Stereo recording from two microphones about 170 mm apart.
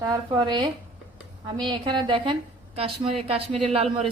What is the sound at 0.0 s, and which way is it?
A woman's voice, 25° right (ahead or behind).